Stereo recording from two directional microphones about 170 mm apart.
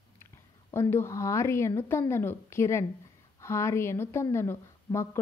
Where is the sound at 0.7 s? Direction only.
15° left (ahead or behind).